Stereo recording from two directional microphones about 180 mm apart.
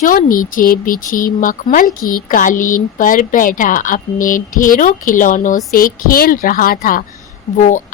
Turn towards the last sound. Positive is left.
turn(degrees=45)  # may be behind; listen again after turning